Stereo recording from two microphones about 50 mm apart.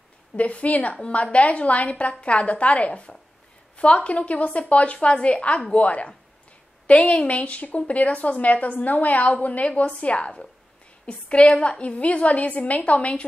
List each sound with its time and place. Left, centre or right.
0.4 s a woman's voice: left